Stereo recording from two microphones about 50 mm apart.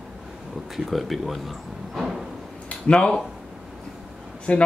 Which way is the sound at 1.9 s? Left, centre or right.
Centre.